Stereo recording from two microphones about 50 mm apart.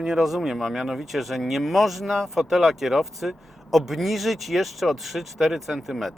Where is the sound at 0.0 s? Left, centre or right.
Centre.